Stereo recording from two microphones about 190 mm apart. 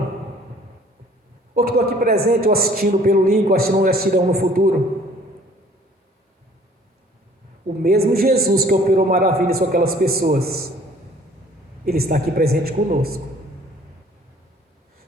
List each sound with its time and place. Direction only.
1.5 s a man's voice: 55° right (ahead or behind)
7.8 s a man's voice: 55° right (ahead or behind)
11.9 s a man's voice: 55° right (ahead or behind)